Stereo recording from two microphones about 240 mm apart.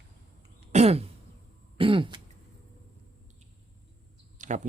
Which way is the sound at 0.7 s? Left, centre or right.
Right.